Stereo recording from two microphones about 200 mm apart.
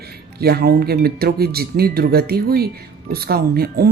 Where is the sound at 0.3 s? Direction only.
50° right (ahead or behind).